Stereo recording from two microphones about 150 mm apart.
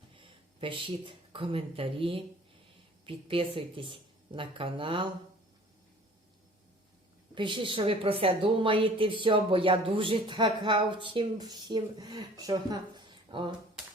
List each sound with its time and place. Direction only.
0.2 s a woman's voice: 35° right (ahead or behind)
7.3 s a woman's voice: 35° right (ahead or behind)